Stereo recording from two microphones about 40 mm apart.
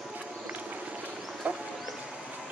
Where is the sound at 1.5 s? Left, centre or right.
Right.